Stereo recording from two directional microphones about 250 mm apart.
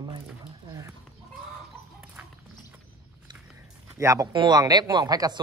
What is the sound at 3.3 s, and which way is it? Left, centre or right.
Speech, centre.